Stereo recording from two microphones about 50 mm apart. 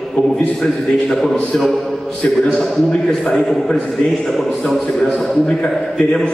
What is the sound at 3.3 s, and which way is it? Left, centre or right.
A man's voice, centre.